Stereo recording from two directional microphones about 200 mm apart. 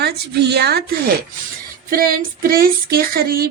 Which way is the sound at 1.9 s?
45° right (ahead or behind).